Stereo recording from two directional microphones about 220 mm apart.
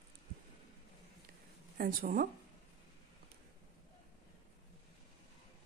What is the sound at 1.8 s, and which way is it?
Speech, 40° right (ahead or behind).